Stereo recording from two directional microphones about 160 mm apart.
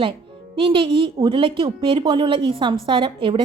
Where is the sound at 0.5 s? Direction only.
30° right (ahead or behind).